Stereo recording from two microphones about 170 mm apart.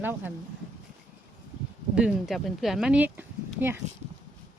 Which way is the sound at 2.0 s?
5° right (ahead or behind).